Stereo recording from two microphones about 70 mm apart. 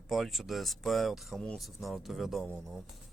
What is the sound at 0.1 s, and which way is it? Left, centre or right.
Speech, centre.